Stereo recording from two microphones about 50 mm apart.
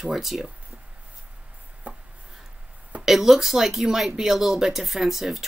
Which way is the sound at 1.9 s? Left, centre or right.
Right.